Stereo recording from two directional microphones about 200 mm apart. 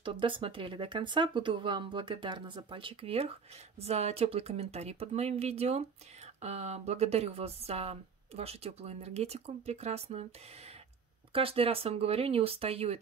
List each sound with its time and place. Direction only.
0.0 s speech: 25° right (ahead or behind)
11.3 s speech: 30° right (ahead or behind)